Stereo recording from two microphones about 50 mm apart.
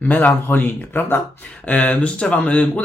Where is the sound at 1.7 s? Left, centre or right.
Left.